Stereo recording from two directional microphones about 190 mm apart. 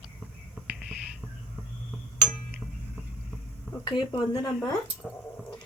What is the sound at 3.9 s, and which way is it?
Speech, 25° left (ahead or behind).